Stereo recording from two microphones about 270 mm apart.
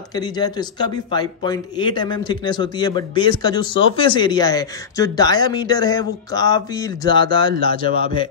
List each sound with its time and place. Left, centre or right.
0.1 s speech: centre